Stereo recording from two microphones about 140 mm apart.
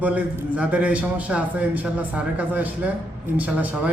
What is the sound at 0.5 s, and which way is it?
Speech, 10° right (ahead or behind).